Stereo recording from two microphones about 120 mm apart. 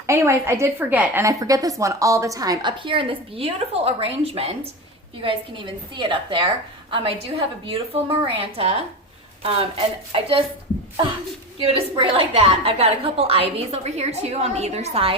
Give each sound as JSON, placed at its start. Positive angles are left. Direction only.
{"t": 0.1, "sound": "a woman's voice", "side_deg": -20}
{"t": 1.2, "sound": "a woman's voice", "side_deg": -30}
{"t": 11.6, "sound": "a woman's voice", "side_deg": -50}